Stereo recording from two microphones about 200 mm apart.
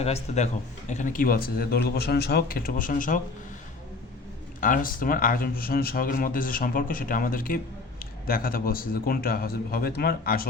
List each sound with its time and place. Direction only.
0.0 s speech: 35° left (ahead or behind)
4.6 s speech: 45° left (ahead or behind)